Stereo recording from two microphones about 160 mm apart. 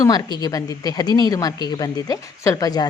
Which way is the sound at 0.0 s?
25° left (ahead or behind).